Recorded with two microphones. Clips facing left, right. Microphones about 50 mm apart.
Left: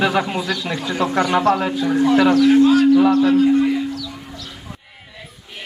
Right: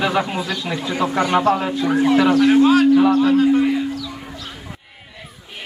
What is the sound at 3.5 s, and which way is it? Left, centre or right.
Music, right.